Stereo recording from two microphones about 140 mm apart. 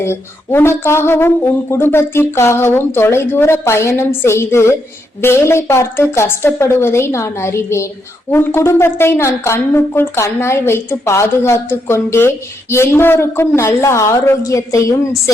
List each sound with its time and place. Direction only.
0.0 s a woman's voice: 20° left (ahead or behind)